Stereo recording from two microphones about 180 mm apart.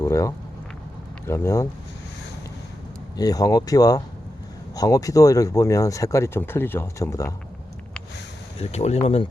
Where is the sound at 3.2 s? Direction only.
20° left (ahead or behind).